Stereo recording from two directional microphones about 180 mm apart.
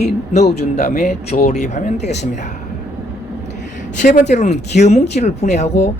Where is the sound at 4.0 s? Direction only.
45° left (ahead or behind).